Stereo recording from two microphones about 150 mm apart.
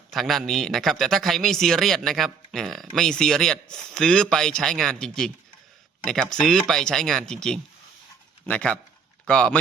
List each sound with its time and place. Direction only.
0.1 s speech: centre (ahead or behind)